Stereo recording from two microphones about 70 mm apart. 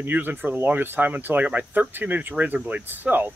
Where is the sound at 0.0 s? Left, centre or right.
Right.